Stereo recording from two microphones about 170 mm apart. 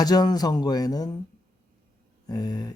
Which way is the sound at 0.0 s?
25° left (ahead or behind).